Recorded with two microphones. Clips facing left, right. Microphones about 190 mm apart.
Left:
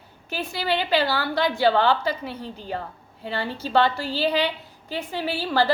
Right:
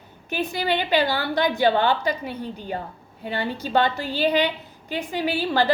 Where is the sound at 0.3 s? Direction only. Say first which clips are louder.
Right 2 dB; 20° right (ahead or behind).